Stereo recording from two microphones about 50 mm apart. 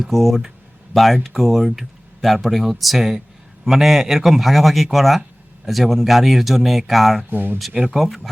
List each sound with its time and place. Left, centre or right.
0.0 s speech: centre
7.3 s speech: right
7.8 s speech: centre